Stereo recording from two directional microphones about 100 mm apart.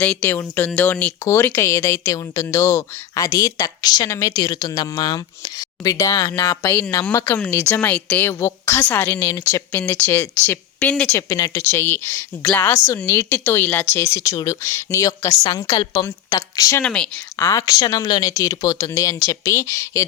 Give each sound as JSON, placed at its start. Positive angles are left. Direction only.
{"t": 0.0, "sound": "speech", "side_deg": 15}
{"t": 7.5, "sound": "a woman's voice", "side_deg": 20}
{"t": 9.3, "sound": "speech", "side_deg": 35}
{"t": 9.8, "sound": "a woman's voice", "side_deg": 20}
{"t": 11.3, "sound": "speech", "side_deg": 35}
{"t": 11.6, "sound": "a woman's voice", "side_deg": 25}
{"t": 16.8, "sound": "speech", "side_deg": 10}
{"t": 17.4, "sound": "speech", "side_deg": 35}